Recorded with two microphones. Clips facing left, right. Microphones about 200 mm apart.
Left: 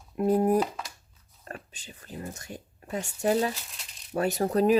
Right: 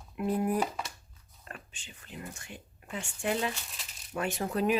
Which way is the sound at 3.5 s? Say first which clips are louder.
Left 2 dB; centre (ahead or behind).